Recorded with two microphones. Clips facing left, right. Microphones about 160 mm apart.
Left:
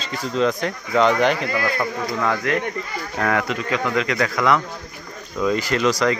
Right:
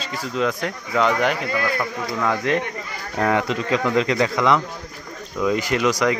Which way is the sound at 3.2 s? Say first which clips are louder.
Right 2 dB; 20° right (ahead or behind).